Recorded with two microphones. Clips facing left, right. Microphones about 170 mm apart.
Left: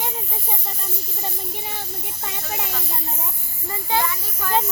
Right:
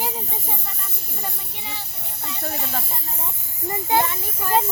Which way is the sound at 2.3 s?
60° right (ahead or behind).